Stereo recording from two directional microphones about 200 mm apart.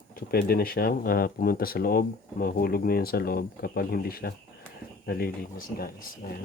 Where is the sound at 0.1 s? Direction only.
50° left (ahead or behind).